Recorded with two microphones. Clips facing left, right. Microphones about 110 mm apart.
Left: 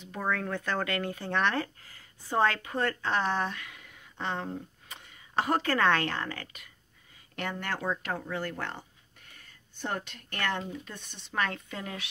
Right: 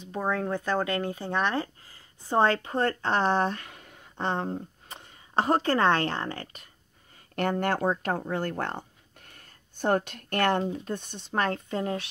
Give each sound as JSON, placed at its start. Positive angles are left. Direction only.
{"t": 0.1, "sound": "speech", "side_deg": -25}
{"t": 7.3, "sound": "speech", "side_deg": -45}